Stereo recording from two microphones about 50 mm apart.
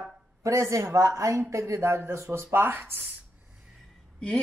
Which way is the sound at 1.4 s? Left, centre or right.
Right.